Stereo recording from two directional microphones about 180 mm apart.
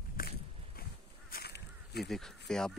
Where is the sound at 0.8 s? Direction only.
55° left (ahead or behind).